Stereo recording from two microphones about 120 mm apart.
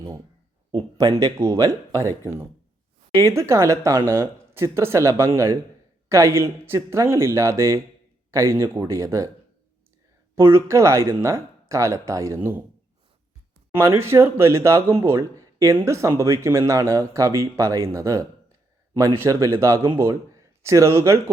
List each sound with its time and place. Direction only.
0.7 s speech: 35° right (ahead or behind)
10.3 s speech: 20° right (ahead or behind)
13.7 s speech: 20° right (ahead or behind)